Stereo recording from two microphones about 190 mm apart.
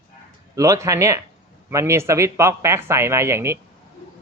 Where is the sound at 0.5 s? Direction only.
15° right (ahead or behind).